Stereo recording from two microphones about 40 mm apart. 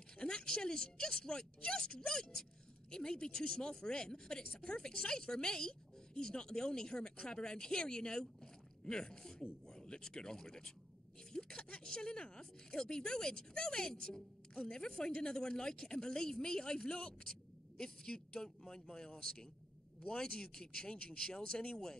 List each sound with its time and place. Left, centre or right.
0.2 s a woman's voice: centre